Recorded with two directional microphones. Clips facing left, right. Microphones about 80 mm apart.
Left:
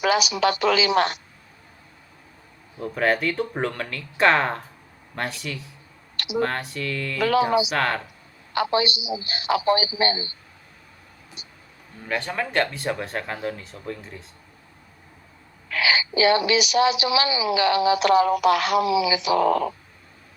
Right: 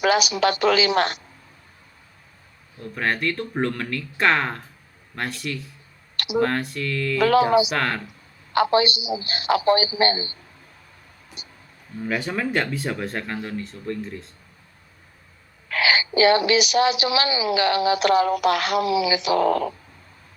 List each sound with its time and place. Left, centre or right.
0.0 s a woman's voice: right
2.7 s speech: centre
6.1 s speech: right
6.4 s speech: centre
7.2 s a woman's voice: right
7.7 s speech: centre
8.5 s a woman's voice: right
11.4 s music: right
12.0 s speech: centre
15.7 s a woman's voice: right